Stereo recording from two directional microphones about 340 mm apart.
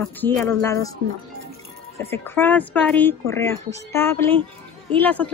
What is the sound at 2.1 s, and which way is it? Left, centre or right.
Speech, centre.